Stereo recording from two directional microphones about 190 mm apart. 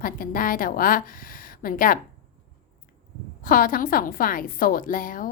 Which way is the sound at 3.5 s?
50° left (ahead or behind).